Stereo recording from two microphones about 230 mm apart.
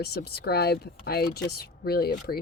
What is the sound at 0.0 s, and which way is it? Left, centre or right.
Speech, left.